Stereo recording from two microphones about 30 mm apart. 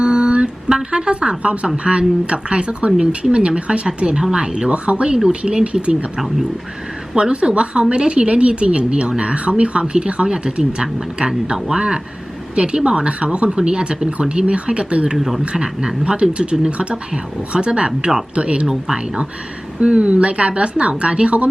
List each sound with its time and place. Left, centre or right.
0.0 s mantra: right
0.9 s speech: right
4.1 s speech: right
7.2 s speech: right
10.2 s speech: right
13.6 s speech: right
15.5 s speech: right
18.6 s speech: centre
18.9 s speech: right